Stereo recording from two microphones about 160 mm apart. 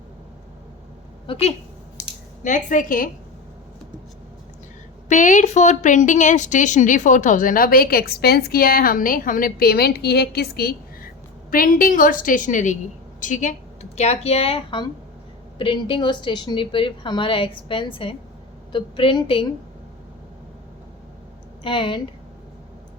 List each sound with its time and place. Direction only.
1.3 s a woman's voice: 40° left (ahead or behind)
2.4 s a woman's voice: 50° left (ahead or behind)
5.0 s a woman's voice: 50° left (ahead or behind); by 11.1 s 75° left (ahead or behind)
11.5 s a woman's voice: 60° left (ahead or behind); by 19.5 s 30° left (ahead or behind)
21.6 s a woman's voice: 30° left (ahead or behind)